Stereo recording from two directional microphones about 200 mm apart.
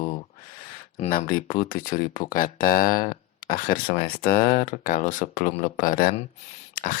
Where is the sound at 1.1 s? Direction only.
45° left (ahead or behind).